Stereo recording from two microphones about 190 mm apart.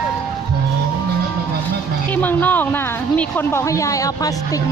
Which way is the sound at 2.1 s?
10° left (ahead or behind).